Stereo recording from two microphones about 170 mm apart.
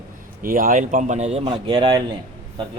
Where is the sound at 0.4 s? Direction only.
55° right (ahead or behind); by 2.1 s 25° right (ahead or behind).